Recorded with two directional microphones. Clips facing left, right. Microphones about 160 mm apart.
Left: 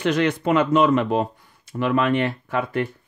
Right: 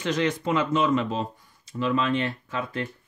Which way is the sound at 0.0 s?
60° left (ahead or behind).